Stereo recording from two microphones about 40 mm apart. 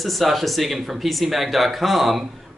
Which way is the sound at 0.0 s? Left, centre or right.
Centre.